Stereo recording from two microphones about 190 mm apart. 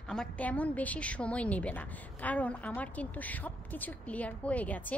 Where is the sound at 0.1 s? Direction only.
5° left (ahead or behind).